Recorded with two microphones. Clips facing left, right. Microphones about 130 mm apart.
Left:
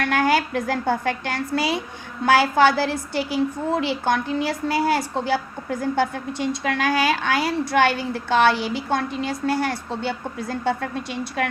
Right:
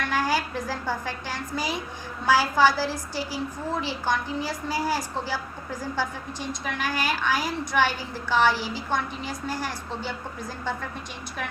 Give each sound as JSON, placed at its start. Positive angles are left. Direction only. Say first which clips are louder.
{"t": 0.0, "sound": "a woman's voice", "louder": "left 5 dB", "side_deg": 65}
{"t": 2.2, "sound": "a woman's voice", "louder": "left 4 dB", "side_deg": 65}
{"t": 6.7, "sound": "a woman's voice", "louder": "left 7 dB", "side_deg": 90}
{"t": 7.7, "sound": "a woman's voice", "louder": "left 4 dB", "side_deg": 65}